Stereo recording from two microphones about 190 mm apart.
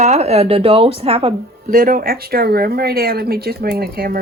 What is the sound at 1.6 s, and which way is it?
Speech, 50° right (ahead or behind).